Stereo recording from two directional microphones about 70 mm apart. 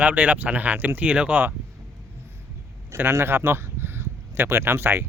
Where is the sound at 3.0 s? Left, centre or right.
Right.